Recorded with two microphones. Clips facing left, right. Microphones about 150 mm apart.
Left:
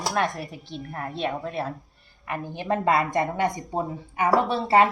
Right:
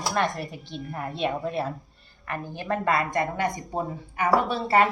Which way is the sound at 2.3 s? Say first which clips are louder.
Left 2 dB; 20° left (ahead or behind).